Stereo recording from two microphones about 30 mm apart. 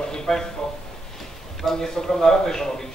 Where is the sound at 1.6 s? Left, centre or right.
Centre.